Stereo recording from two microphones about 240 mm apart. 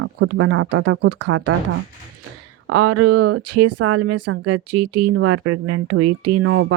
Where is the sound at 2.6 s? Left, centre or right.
Right.